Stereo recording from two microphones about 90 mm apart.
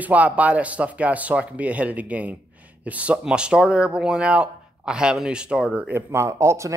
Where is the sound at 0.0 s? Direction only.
15° right (ahead or behind).